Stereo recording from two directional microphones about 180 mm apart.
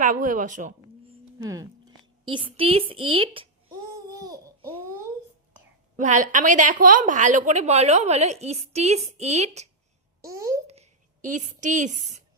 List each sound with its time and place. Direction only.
0.0 s speech: 45° right (ahead or behind)
1.4 s a woman's voice: 20° right (ahead or behind)
3.9 s babbling: 20° right (ahead or behind)
6.0 s a woman's voice: 45° right (ahead or behind)
10.2 s a sound: 20° right (ahead or behind)
10.7 s a sound: 40° right (ahead or behind)